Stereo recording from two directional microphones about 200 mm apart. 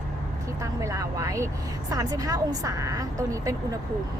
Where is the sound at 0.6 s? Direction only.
15° right (ahead or behind).